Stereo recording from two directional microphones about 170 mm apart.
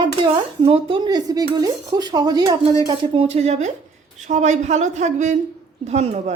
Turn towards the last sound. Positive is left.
turn(degrees=-40)  # may be behind; listen again after turning